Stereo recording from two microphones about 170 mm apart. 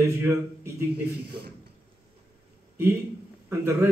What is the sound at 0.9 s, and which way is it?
Speech, 70° right (ahead or behind).